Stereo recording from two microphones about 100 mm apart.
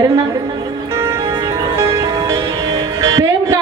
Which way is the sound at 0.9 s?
25° right (ahead or behind).